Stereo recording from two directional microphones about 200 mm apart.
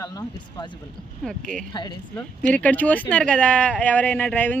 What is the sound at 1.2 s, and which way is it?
Speech, 5° left (ahead or behind).